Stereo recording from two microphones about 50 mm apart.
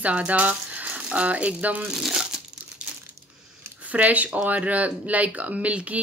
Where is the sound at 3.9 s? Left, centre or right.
Right.